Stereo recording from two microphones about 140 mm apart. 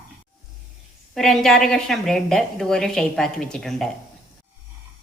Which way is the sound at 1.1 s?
Centre (ahead or behind).